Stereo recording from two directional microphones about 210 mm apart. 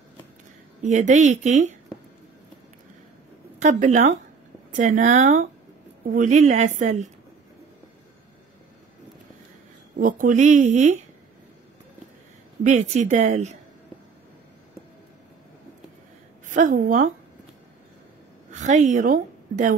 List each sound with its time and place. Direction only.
0.8 s a woman's voice: 35° right (ahead or behind)
3.5 s a woman's voice: 35° right (ahead or behind)
9.9 s a woman's voice: 40° right (ahead or behind)
12.6 s a woman's voice: 35° right (ahead or behind)
16.4 s a woman's voice: 40° right (ahead or behind)
18.5 s a woman's voice: 35° right (ahead or behind)